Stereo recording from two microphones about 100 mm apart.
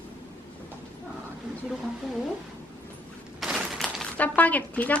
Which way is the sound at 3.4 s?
Centre (ahead or behind).